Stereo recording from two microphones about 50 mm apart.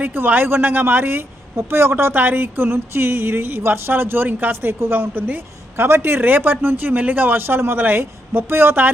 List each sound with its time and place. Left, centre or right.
0.0 s speech: right
6.1 s speech: right